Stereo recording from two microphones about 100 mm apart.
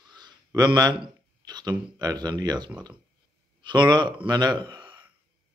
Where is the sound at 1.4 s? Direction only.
45° right (ahead or behind).